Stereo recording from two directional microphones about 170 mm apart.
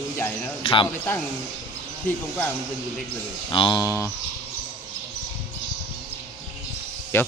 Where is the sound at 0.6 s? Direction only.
30° left (ahead or behind).